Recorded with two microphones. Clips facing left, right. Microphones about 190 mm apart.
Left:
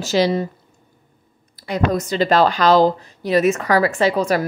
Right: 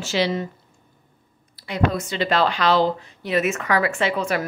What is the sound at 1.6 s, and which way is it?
A woman's voice, 40° left (ahead or behind).